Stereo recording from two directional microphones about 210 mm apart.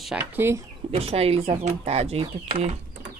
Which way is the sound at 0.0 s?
5° right (ahead or behind).